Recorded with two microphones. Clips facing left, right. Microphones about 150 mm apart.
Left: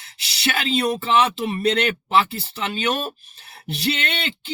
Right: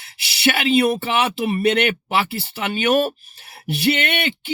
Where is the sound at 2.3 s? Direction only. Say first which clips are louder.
Right 3 dB; 65° right (ahead or behind).